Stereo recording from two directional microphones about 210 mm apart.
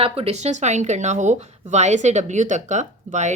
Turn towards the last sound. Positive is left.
turn(degrees=-35)  # may be behind; listen again after turning